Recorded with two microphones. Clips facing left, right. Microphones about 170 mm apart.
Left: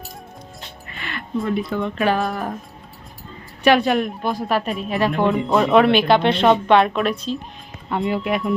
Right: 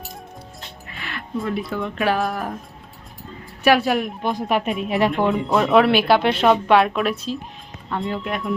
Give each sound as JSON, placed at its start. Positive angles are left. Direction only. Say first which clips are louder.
{"t": 0.9, "sound": "speech", "louder": "left 2 dB", "side_deg": 0}
{"t": 3.6, "sound": "speech", "louder": "left 1 dB", "side_deg": -5}
{"t": 4.2, "sound": "speech", "louder": "even", "side_deg": -20}
{"t": 5.2, "sound": "speech", "louder": "left 1 dB", "side_deg": 0}
{"t": 7.9, "sound": "speech", "louder": "left 4 dB", "side_deg": 15}
{"t": 8.2, "sound": "speech", "louder": "left 4 dB", "side_deg": 5}